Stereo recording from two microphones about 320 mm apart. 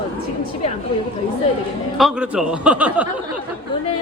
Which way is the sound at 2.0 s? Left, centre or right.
Centre.